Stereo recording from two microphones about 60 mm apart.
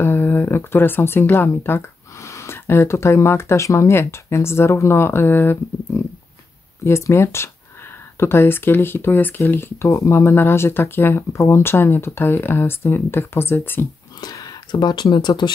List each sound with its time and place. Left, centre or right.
0.0 s speech: left
6.8 s speech: left
9.8 s speech: left
11.3 s speech: left
14.2 s a sound: left